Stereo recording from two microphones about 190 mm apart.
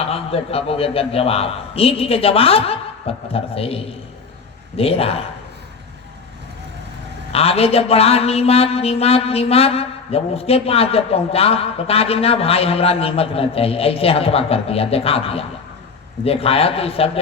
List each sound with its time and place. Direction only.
0.0 s speech: 30° left (ahead or behind)
7.3 s speech: 30° left (ahead or behind)